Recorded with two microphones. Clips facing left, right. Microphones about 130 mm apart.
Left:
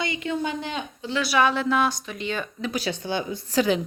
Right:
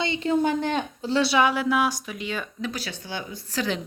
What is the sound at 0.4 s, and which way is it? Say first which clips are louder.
Speech: right 5 dB; 50° right (ahead or behind).